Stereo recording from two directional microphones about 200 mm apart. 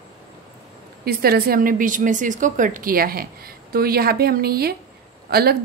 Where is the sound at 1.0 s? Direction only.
50° right (ahead or behind).